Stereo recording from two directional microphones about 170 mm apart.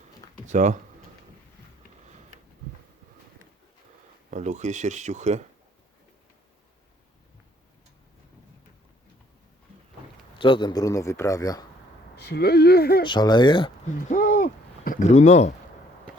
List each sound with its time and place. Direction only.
0.4 s speech: 45° right (ahead or behind)
4.3 s speech: 45° right (ahead or behind)
10.3 s a man's voice: 30° left (ahead or behind)
12.1 s speech: 70° left (ahead or behind)
13.1 s a man's voice: 25° left (ahead or behind)
13.8 s a sound: 55° left (ahead or behind)
15.0 s speech: 40° left (ahead or behind)